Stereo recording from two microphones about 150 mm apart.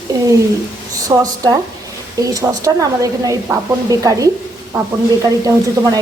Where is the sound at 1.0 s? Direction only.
25° right (ahead or behind).